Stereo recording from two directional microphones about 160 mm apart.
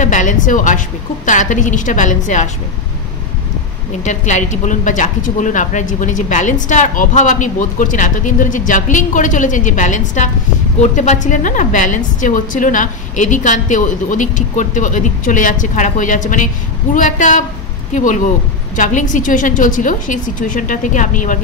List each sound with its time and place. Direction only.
0.0 s speech: 50° left (ahead or behind)
4.0 s speech: 50° left (ahead or behind)